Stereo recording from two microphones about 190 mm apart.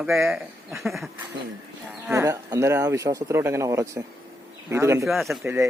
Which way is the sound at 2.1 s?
15° right (ahead or behind).